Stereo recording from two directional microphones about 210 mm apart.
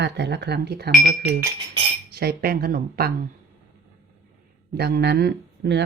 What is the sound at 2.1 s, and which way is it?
Speech, 50° right (ahead or behind).